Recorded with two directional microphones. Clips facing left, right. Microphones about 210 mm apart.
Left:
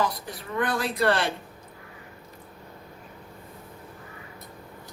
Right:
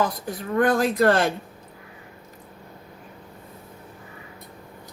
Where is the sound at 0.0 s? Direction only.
45° right (ahead or behind).